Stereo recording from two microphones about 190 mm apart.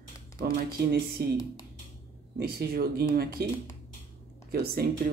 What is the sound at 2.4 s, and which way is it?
Speech, 55° right (ahead or behind).